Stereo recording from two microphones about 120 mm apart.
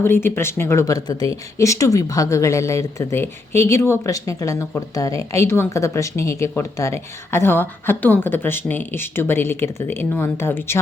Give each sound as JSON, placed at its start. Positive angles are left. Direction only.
{"t": 0.0, "sound": "speech", "side_deg": 20}